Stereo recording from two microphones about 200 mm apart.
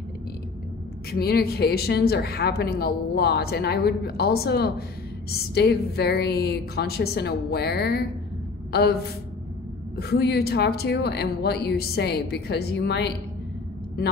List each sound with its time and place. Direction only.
1.1 s speech: 50° left (ahead or behind)
9.9 s speech: 55° left (ahead or behind)